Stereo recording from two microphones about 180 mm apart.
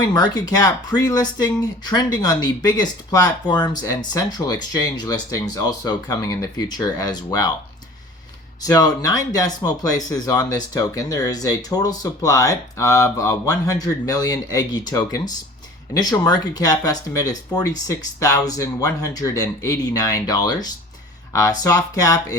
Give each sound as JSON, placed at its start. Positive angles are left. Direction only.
{"t": 0.0, "sound": "speech", "side_deg": 25}
{"t": 8.6, "sound": "speech", "side_deg": 20}